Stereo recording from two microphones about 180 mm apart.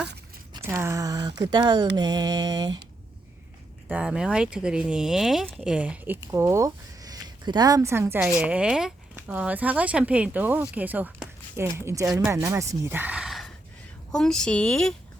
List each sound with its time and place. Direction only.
0.6 s speech: 15° right (ahead or behind)
3.8 s speech: 5° right (ahead or behind)